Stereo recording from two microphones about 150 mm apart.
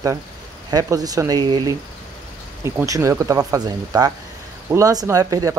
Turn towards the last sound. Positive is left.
turn(degrees=-20)  # may be behind; listen again after turning